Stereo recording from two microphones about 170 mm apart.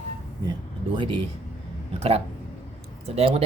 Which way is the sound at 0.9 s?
30° right (ahead or behind).